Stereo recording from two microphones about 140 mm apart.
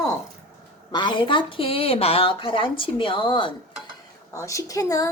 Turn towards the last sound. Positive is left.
turn(degrees=25)  # may be behind; listen again after turning